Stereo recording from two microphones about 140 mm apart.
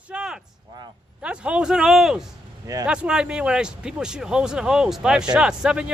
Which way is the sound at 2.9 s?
5° right (ahead or behind).